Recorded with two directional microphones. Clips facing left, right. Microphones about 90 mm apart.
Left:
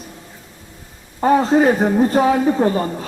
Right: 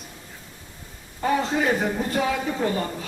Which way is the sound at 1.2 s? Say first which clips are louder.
Left 9 dB; 40° left (ahead or behind).